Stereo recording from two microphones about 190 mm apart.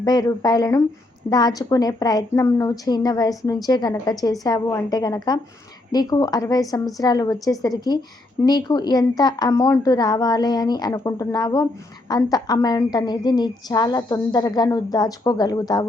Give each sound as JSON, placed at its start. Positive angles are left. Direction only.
{"t": 0.0, "sound": "a woman's voice", "side_deg": 20}